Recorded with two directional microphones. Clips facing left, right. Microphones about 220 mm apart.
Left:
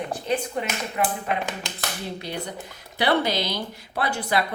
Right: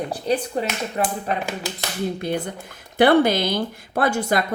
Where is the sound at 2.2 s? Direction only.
50° right (ahead or behind).